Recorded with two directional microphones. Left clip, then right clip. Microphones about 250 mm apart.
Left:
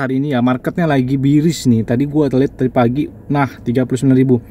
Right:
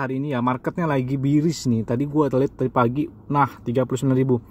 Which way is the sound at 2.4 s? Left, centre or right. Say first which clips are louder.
Left 6 dB; centre.